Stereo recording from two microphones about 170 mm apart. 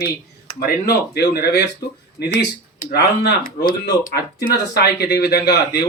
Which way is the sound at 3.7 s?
65° left (ahead or behind).